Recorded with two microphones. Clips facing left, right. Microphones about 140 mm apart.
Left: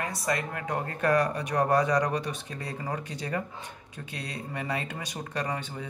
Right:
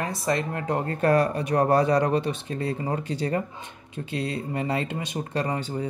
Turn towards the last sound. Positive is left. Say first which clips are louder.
# right 5 dB
turn(degrees=-30)  # may be behind; listen again after turning